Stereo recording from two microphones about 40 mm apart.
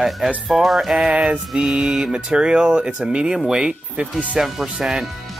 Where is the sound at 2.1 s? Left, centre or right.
Right.